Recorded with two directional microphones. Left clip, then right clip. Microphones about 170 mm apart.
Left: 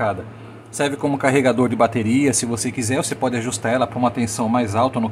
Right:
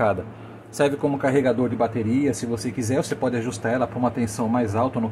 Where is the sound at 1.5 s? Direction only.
35° left (ahead or behind).